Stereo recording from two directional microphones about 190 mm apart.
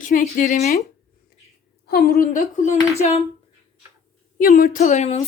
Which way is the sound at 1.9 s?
55° left (ahead or behind).